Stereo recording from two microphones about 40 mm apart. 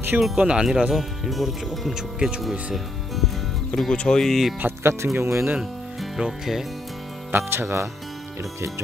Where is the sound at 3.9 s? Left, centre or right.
Left.